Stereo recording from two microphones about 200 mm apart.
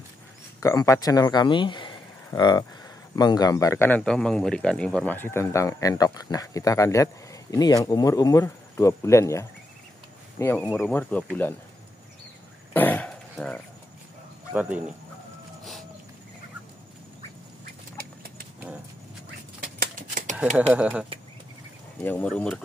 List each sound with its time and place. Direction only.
0.6 s a man's voice: 15° left (ahead or behind)
12.7 s a sound: 10° left (ahead or behind)
14.5 s speech: 5° right (ahead or behind)
19.6 s shuffling cards: 45° right (ahead or behind)
20.7 s speech: 5° right (ahead or behind)
22.0 s a man's voice: 10° left (ahead or behind)